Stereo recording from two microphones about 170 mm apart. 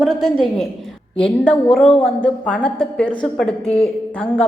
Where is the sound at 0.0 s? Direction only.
Centre (ahead or behind).